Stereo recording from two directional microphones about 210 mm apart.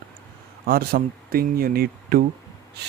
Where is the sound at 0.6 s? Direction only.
45° right (ahead or behind).